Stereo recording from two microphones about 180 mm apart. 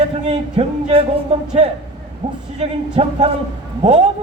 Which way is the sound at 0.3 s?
30° right (ahead or behind).